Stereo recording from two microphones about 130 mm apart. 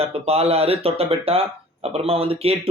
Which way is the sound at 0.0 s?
50° right (ahead or behind).